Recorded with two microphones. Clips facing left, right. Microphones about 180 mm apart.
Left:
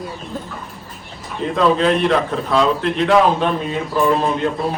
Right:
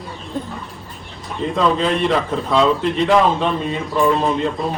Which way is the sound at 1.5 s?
Centre (ahead or behind).